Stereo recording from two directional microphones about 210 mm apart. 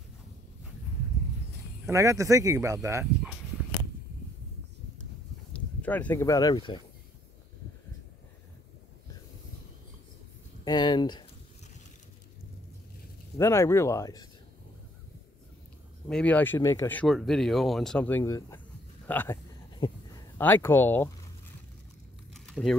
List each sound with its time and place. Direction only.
1.9 s speech: 15° right (ahead or behind)
5.5 s speech: 5° left (ahead or behind)
10.6 s speech: 20° left (ahead or behind)
13.4 s speech: 10° left (ahead or behind)
16.1 s speech: 5° left (ahead or behind)
19.8 s speech: 25° left (ahead or behind)
20.3 s speech: 10° left (ahead or behind)
22.3 s crumpling: centre (ahead or behind)